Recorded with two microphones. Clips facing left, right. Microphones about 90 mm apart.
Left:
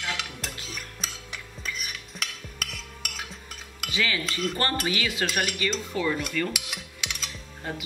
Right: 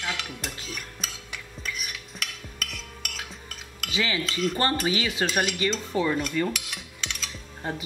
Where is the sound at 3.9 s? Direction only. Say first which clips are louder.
Even; 20° right (ahead or behind).